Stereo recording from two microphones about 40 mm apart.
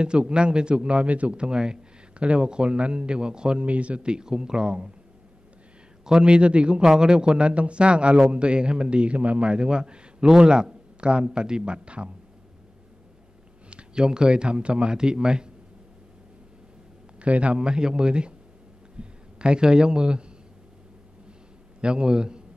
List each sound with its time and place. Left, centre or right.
0.0 s speech: right
3.6 s speech: right
6.0 s speech: right
9.5 s speech: right
13.7 s speech: right
17.2 s speech: right
21.8 s speech: right